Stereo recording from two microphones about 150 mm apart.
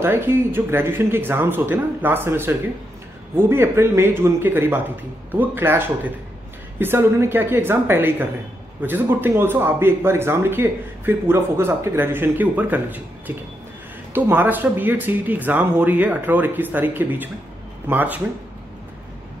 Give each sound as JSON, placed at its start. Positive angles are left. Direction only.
{"t": 0.0, "sound": "speech", "side_deg": -15}